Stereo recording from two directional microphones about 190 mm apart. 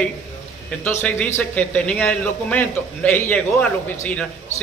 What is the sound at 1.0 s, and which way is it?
A man's voice, 10° left (ahead or behind).